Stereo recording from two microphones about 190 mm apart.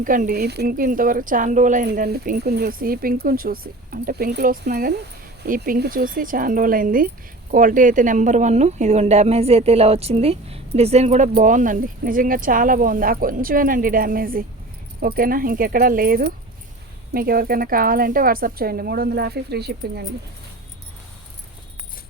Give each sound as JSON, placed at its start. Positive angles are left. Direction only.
{"t": 0.0, "sound": "speech", "side_deg": -45}
{"t": 1.9, "sound": "speech", "side_deg": -55}